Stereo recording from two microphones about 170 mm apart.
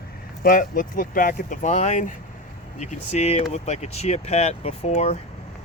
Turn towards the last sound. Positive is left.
turn(degrees=40)  # may be behind; listen again after turning